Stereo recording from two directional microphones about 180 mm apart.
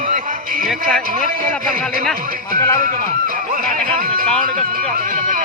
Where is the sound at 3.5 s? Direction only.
50° right (ahead or behind).